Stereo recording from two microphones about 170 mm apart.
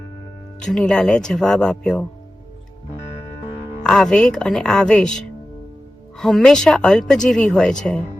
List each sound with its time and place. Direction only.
0.6 s speech: 5° left (ahead or behind)
3.8 s speech: 5° left (ahead or behind)